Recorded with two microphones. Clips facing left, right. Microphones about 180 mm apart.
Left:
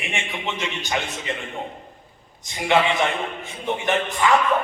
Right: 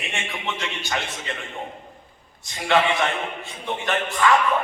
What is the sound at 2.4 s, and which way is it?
Speech, 15° left (ahead or behind).